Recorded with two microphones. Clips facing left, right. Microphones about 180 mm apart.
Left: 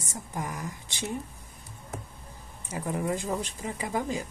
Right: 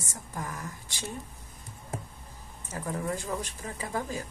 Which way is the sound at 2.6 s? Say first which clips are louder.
Left 3 dB; 15° left (ahead or behind).